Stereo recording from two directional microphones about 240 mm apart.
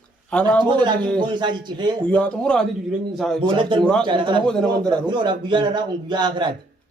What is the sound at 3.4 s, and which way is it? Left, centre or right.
Speech, centre.